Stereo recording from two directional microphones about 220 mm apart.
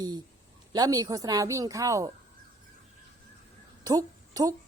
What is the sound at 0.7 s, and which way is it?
A woman's voice, 15° right (ahead or behind).